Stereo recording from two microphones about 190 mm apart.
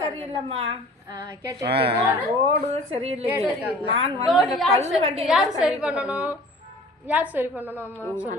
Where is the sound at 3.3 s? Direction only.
10° right (ahead or behind).